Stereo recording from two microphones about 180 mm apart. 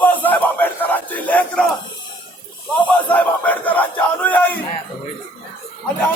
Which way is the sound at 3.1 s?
10° left (ahead or behind).